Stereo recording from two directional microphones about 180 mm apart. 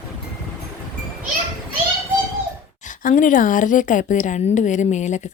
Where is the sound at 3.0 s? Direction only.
45° left (ahead or behind).